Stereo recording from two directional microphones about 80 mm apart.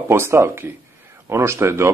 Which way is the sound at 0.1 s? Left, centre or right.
Right.